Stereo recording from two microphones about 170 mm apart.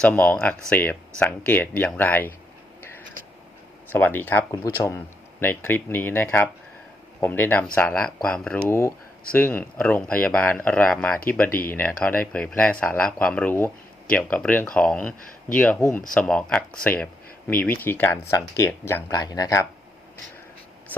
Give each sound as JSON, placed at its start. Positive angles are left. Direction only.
{"t": 0.0, "sound": "speech", "side_deg": 5}
{"t": 3.8, "sound": "speech", "side_deg": 10}
{"t": 11.4, "sound": "speech", "side_deg": 60}
{"t": 11.7, "sound": "speech", "side_deg": 10}
{"t": 19.1, "sound": "speech", "side_deg": 25}